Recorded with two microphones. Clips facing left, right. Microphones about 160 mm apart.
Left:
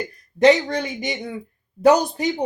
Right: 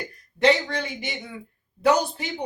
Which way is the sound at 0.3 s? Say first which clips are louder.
Left 5 dB; 40° left (ahead or behind).